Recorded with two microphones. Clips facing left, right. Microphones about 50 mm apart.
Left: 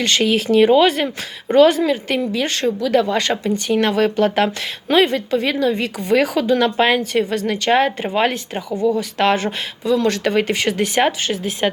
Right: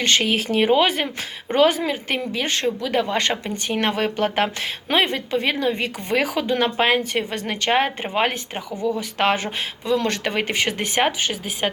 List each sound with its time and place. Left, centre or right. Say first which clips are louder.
0.0 s speech: left 3 dB; right
9.9 s speech: left 5 dB; right